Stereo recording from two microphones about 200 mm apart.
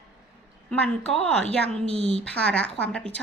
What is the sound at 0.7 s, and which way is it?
Speech, 5° left (ahead or behind).